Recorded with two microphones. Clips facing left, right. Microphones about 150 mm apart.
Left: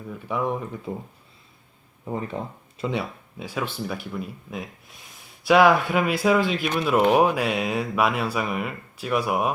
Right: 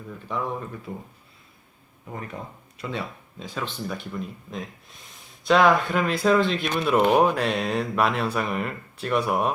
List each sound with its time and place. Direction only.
0.3 s speech: 15° left (ahead or behind)
2.3 s speech: 30° left (ahead or behind)
2.9 s speech: 10° left (ahead or behind)